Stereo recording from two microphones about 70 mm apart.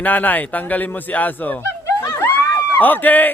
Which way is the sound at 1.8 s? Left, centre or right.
Left.